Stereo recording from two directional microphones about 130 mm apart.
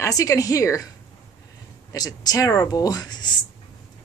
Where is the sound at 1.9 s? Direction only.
30° left (ahead or behind).